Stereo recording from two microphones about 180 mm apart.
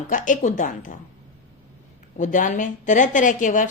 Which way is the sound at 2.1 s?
45° left (ahead or behind).